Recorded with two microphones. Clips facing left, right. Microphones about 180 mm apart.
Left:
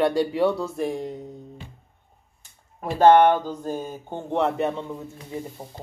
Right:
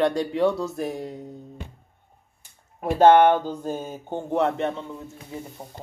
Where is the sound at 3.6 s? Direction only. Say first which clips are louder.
Even; 15° right (ahead or behind).